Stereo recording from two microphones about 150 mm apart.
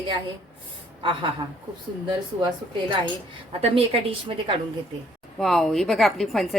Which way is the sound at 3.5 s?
40° right (ahead or behind).